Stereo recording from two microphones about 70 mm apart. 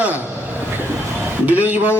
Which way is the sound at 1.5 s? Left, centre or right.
Right.